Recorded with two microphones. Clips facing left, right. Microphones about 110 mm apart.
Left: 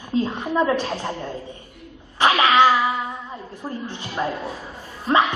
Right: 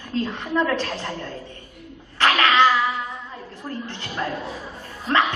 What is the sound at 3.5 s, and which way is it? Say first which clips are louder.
Speech: left 1 dB; 15° left (ahead or behind).